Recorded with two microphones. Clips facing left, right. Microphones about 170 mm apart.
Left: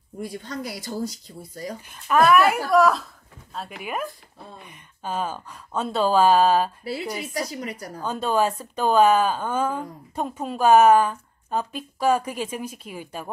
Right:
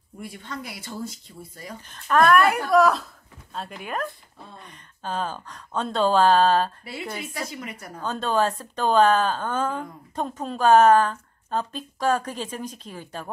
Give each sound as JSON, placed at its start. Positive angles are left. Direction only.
{"t": 0.3, "sound": "speech", "side_deg": 40}
{"t": 1.9, "sound": "a woman's voice", "side_deg": 5}
{"t": 6.8, "sound": "speech", "side_deg": 35}
{"t": 8.0, "sound": "a woman's voice", "side_deg": 10}